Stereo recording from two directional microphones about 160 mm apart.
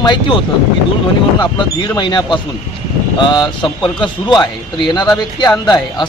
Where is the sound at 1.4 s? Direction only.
30° left (ahead or behind).